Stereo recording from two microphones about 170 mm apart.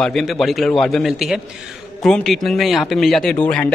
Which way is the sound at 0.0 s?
Centre (ahead or behind).